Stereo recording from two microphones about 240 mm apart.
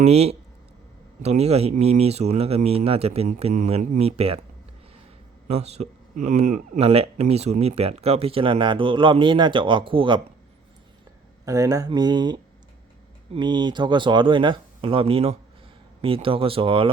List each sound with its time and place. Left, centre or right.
0.0 s speech: right
5.5 s speech: right
11.4 s speech: centre